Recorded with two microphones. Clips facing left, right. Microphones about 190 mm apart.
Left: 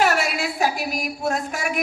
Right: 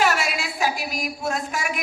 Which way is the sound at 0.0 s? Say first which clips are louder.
Left 2 dB; 55° left (ahead or behind).